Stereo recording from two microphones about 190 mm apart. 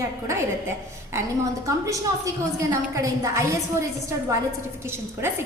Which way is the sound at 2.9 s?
15° right (ahead or behind).